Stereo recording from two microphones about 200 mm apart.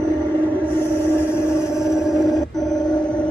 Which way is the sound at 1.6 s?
5° right (ahead or behind).